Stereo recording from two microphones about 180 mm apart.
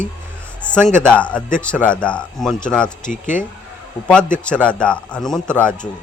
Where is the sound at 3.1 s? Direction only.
45° left (ahead or behind).